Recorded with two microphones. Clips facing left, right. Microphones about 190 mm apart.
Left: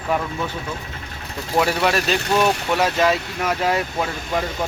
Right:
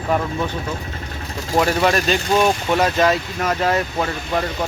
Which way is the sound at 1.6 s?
5° left (ahead or behind).